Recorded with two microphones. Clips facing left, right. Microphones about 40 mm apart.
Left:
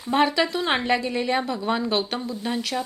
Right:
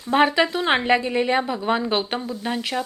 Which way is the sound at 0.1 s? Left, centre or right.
Right.